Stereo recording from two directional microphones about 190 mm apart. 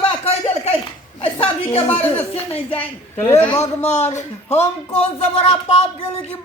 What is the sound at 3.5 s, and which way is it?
Speech, 35° left (ahead or behind).